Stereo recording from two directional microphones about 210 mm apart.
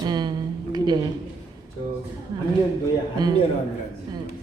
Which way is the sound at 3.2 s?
20° right (ahead or behind).